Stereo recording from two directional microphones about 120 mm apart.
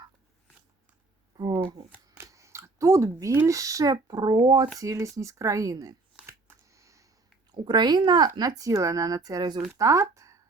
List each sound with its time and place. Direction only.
1.4 s shuffling cards: 30° right (ahead or behind)
1.9 s speech: 20° right (ahead or behind); by 4.7 s 40° right (ahead or behind)
4.8 s speech: 25° right (ahead or behind)
6.2 s a sound: 25° right (ahead or behind)
7.5 s speech: 40° right (ahead or behind)